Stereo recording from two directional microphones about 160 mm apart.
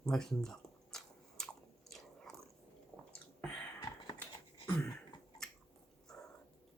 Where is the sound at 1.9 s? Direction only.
Centre (ahead or behind).